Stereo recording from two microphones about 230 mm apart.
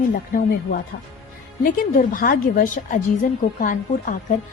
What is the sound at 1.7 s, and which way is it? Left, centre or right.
A woman's voice, left.